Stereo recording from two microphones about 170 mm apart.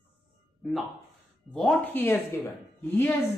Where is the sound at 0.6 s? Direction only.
Centre (ahead or behind).